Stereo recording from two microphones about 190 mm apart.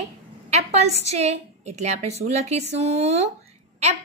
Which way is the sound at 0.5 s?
35° right (ahead or behind).